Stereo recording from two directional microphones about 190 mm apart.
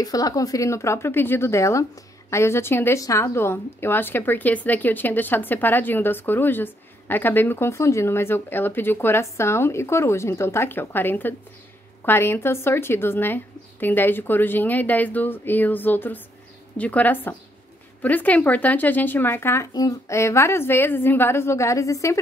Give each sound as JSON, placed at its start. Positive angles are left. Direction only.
{"t": 0.0, "sound": "a woman's voice", "side_deg": 20}